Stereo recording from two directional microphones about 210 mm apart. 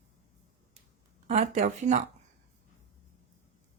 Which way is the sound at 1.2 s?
35° right (ahead or behind).